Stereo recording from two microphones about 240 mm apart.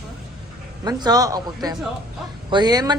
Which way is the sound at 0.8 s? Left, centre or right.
Centre.